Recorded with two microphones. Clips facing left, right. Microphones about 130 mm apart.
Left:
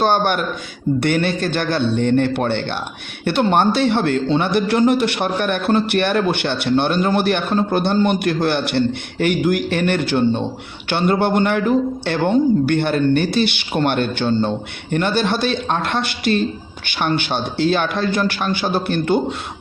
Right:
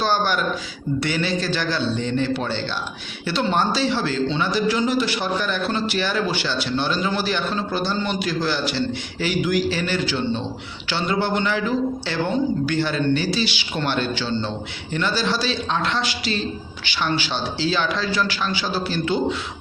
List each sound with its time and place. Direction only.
0.0 s a man's voice: 55° left (ahead or behind)